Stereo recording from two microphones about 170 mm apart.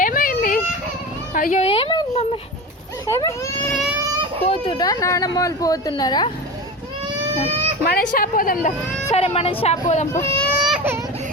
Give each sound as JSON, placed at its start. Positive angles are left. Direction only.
{"t": 0.0, "sound": "baby cry", "side_deg": 55}
{"t": 1.3, "sound": "a sound", "side_deg": 50}
{"t": 1.6, "sound": "a sound", "side_deg": 35}
{"t": 3.1, "sound": "a child's voice", "side_deg": 15}
{"t": 3.7, "sound": "baby cry", "side_deg": 0}
{"t": 4.4, "sound": "speech", "side_deg": 30}
{"t": 7.9, "sound": "speech", "side_deg": 55}
{"t": 9.1, "sound": "a woman's voice", "side_deg": 35}
{"t": 10.1, "sound": "speech", "side_deg": 15}
{"t": 10.6, "sound": "baby cry", "side_deg": -5}